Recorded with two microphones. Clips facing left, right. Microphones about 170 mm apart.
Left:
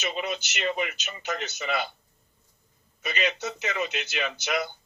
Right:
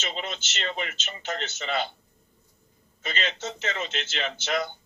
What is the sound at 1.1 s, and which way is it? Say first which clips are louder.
Speech: even; 20° right (ahead or behind).